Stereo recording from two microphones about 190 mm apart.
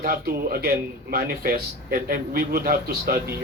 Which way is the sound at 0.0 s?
50° right (ahead or behind).